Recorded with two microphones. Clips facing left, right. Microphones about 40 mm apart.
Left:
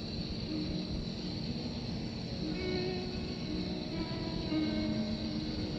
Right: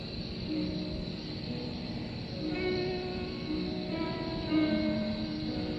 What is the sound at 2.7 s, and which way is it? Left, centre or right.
Music, centre.